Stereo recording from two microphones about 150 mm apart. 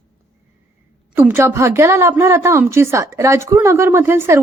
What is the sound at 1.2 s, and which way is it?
A woman's voice, 15° right (ahead or behind).